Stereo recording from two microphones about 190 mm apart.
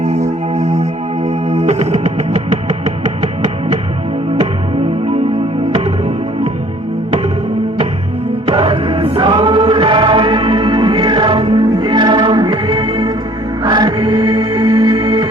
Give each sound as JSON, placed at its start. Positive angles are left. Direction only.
{"t": 1.2, "sound": "music", "side_deg": -35}
{"t": 8.4, "sound": "music", "side_deg": -30}